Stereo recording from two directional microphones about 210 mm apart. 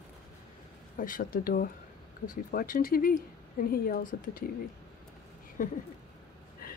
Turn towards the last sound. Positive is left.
turn(degrees=40)  # may be behind; listen again after turning